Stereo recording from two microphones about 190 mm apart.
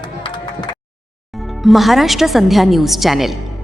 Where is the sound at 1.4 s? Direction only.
Centre (ahead or behind).